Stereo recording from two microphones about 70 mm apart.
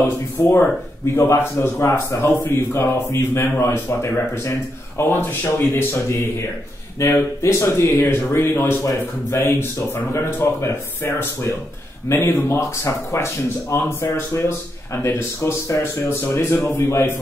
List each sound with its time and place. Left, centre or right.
0.4 s a man's voice: left